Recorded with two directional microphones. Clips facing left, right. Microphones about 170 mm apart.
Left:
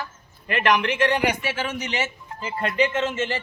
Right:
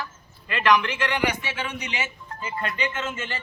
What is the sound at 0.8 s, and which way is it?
Speech, 35° left (ahead or behind).